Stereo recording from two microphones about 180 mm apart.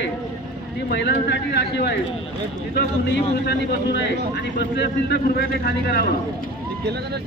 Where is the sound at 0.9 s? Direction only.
70° left (ahead or behind).